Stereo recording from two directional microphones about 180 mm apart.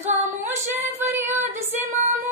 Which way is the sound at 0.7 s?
10° right (ahead or behind).